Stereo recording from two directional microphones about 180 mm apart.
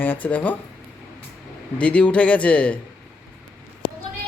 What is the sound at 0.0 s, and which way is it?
Speech, 10° left (ahead or behind).